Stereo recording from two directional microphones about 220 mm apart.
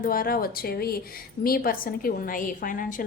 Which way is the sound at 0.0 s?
40° left (ahead or behind).